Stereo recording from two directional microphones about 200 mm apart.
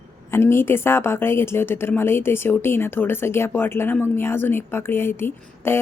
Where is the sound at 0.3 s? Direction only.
10° left (ahead or behind).